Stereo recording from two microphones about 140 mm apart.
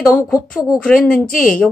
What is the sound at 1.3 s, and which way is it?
Speech, 75° left (ahead or behind).